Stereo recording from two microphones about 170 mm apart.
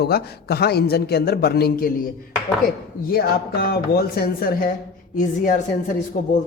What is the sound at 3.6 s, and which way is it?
Speech, 65° left (ahead or behind).